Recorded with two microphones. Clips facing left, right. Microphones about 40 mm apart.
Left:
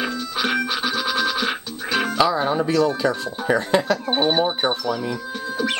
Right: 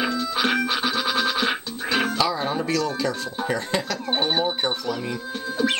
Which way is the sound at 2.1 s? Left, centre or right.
Centre.